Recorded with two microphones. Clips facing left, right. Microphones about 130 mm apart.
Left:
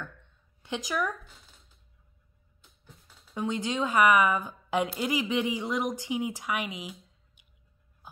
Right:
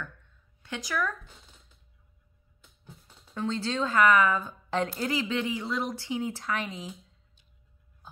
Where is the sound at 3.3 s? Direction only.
15° left (ahead or behind).